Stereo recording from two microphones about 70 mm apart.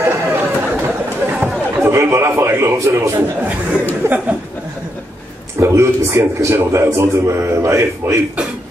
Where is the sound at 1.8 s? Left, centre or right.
Right.